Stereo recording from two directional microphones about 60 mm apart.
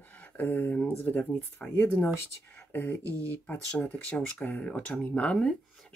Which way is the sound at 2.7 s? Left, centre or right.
Left.